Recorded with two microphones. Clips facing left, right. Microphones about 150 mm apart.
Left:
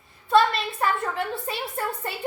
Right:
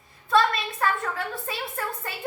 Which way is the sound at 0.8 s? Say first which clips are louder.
Left 1 dB; 25° left (ahead or behind).